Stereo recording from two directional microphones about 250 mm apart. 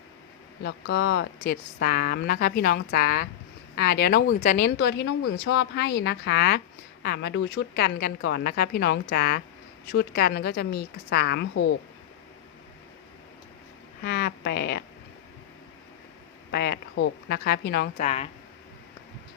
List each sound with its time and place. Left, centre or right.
0.6 s speech: left
14.0 s speech: left
16.5 s speech: left